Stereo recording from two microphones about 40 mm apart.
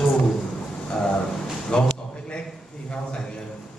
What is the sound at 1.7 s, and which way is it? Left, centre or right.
Speech, left.